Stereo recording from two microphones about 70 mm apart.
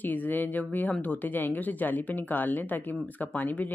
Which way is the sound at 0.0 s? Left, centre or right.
Left.